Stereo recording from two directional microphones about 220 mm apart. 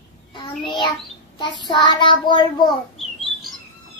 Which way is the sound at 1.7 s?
20° left (ahead or behind).